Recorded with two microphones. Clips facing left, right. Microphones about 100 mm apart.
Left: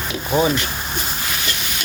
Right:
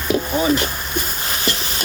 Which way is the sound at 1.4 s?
35° right (ahead or behind).